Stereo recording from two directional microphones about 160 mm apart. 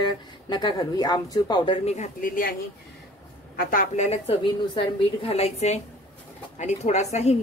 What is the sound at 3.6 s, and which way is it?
Speech, 65° left (ahead or behind).